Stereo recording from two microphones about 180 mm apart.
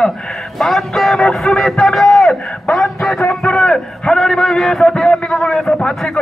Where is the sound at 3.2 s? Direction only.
5° left (ahead or behind).